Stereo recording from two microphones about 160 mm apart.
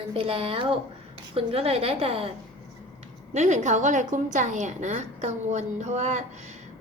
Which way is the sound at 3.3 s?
45° right (ahead or behind).